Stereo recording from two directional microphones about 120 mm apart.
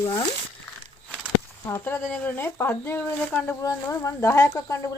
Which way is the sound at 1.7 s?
15° left (ahead or behind).